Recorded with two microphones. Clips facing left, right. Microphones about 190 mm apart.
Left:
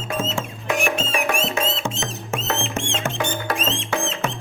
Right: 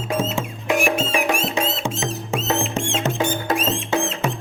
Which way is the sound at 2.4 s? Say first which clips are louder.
Right 4 dB; centre (ahead or behind).